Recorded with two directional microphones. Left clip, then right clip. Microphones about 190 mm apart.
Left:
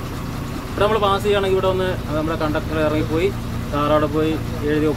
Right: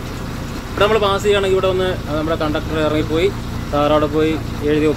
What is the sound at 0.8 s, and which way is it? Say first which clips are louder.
Speech: right 3 dB; centre (ahead or behind).